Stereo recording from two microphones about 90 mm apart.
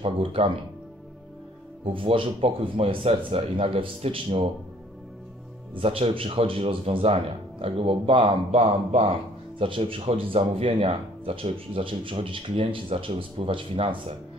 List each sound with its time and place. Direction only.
0.0 s speech: 85° right
1.9 s speech: 80° right
5.8 s speech: 90° right; by 8.4 s 70° right (ahead or behind)
9.6 s speech: 90° right